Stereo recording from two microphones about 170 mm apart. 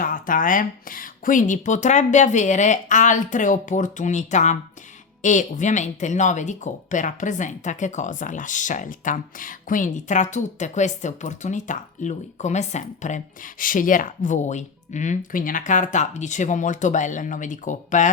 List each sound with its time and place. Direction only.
0.0 s speech: 55° left (ahead or behind)